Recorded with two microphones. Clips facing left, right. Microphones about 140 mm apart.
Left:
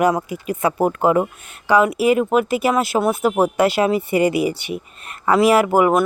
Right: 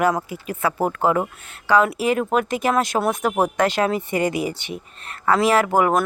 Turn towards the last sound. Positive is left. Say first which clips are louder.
# left 3 dB
turn(degrees=10)  # may be behind; listen again after turning